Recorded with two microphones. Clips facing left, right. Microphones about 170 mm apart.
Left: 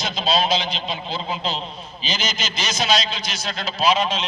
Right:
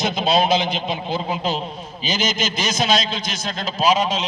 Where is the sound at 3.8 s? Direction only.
40° right (ahead or behind).